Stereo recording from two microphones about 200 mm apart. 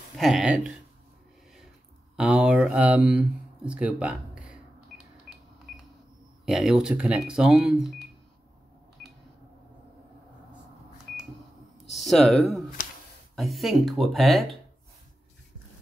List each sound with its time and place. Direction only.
0.2 s speech: 5° right (ahead or behind)
2.1 s speech: 5° right (ahead or behind)
6.4 s speech: centre (ahead or behind)
11.9 s speech: centre (ahead or behind)